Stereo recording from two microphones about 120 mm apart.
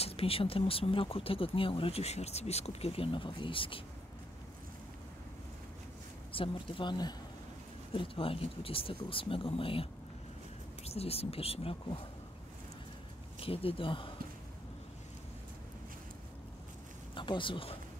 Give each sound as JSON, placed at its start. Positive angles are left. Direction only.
{"t": 0.0, "sound": "speech", "side_deg": 55}
{"t": 6.3, "sound": "speech", "side_deg": 45}
{"t": 7.9, "sound": "speech", "side_deg": 50}
{"t": 13.4, "sound": "speech", "side_deg": 50}
{"t": 17.1, "sound": "speech", "side_deg": 45}